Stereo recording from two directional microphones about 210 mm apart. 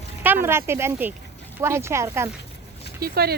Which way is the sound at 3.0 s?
45° right (ahead or behind).